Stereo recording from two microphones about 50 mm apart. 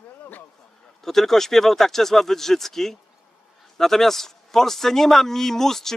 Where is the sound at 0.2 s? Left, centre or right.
Left.